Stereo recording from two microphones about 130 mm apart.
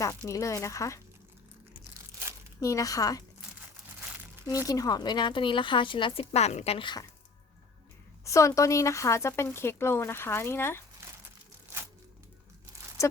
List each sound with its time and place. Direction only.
0.0 s speech: 25° left (ahead or behind)
2.6 s speech: 25° left (ahead or behind)
4.7 s a woman's voice: 30° left (ahead or behind)
6.3 s a woman's voice: 60° left (ahead or behind)
6.7 s a woman's voice: 35° left (ahead or behind)
8.2 s speech: 25° left (ahead or behind)